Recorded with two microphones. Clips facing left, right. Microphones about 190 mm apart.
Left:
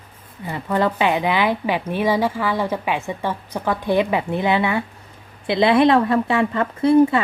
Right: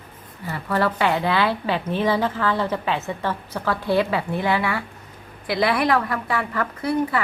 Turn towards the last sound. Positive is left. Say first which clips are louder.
# left 9 dB
turn(degrees=25)  # may be behind; listen again after turning